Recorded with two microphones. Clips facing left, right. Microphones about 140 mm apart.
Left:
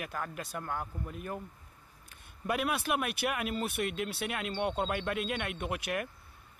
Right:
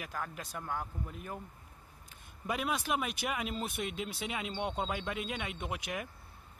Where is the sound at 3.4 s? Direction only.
65° left (ahead or behind).